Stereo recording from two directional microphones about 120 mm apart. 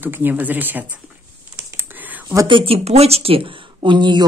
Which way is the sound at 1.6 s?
20° right (ahead or behind).